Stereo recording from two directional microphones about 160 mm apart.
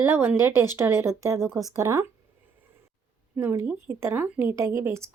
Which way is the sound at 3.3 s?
15° right (ahead or behind).